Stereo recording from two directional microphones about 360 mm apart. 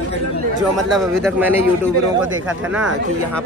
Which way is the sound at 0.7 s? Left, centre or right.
Centre.